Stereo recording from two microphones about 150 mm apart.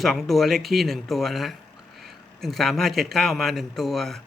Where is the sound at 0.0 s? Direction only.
Centre (ahead or behind).